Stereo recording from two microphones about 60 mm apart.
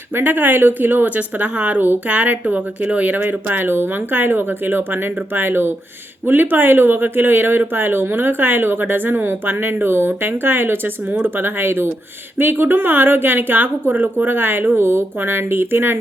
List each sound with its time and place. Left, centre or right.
0.2 s speech: right